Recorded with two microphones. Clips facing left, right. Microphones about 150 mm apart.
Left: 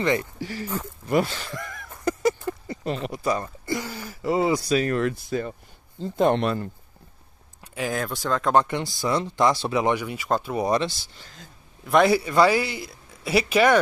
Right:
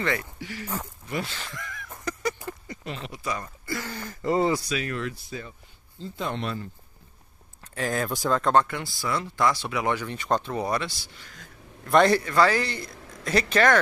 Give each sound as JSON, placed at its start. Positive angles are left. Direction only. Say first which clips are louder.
{"t": 0.0, "sound": "speech", "louder": "left 5 dB", "side_deg": 20}
{"t": 0.4, "sound": "speech", "louder": "left 4 dB", "side_deg": 35}
{"t": 1.3, "sound": "a sound", "louder": "left 4 dB", "side_deg": 35}
{"t": 3.3, "sound": "speech", "louder": "left 5 dB", "side_deg": 25}
{"t": 3.8, "sound": "a man's voice", "louder": "left 1 dB", "side_deg": 10}
{"t": 4.6, "sound": "speech", "louder": "left 8 dB", "side_deg": 40}
{"t": 7.6, "sound": "speech", "louder": "even", "side_deg": 5}
{"t": 8.1, "sound": "speech", "louder": "right 1 dB", "side_deg": -10}
{"t": 8.5, "sound": "speech", "louder": "left 2 dB", "side_deg": 20}
{"t": 9.9, "sound": "a man's voice", "louder": "left 1 dB", "side_deg": 5}
{"t": 10.7, "sound": "speech", "louder": "left 5 dB", "side_deg": 25}
{"t": 11.8, "sound": "a man's voice", "louder": "left 1 dB", "side_deg": 5}